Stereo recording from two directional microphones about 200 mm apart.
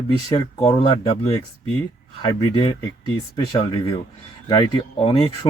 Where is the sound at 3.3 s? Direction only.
20° left (ahead or behind).